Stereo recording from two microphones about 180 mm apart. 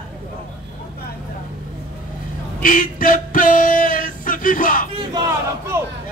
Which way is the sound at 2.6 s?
50° left (ahead or behind).